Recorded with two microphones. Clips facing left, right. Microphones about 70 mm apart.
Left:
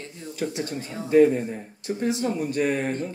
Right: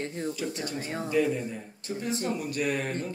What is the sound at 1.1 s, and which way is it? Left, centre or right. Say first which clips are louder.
Speech: left 10 dB; left.